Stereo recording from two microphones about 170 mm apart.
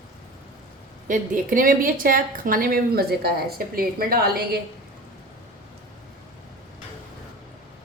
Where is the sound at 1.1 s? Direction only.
55° right (ahead or behind).